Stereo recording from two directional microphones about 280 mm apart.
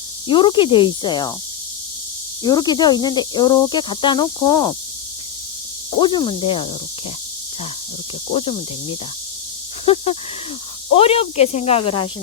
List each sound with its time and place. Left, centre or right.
0.3 s speech: centre
2.4 s speech: centre
6.0 s speech: centre
8.3 s speech: centre